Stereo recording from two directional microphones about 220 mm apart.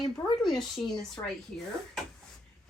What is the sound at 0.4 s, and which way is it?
A woman's voice, centre (ahead or behind).